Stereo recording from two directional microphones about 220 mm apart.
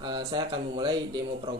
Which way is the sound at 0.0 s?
20° right (ahead or behind).